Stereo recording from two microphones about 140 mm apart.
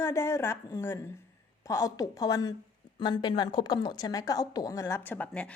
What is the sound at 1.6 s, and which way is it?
A woman's voice, 25° left (ahead or behind).